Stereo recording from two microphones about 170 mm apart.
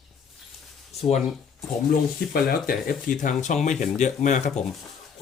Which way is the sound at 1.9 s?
60° left (ahead or behind).